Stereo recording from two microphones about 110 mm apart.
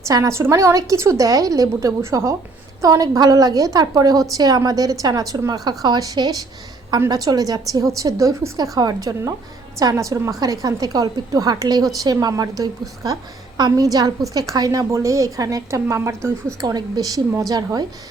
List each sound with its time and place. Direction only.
0.1 s a woman's voice: 30° right (ahead or behind)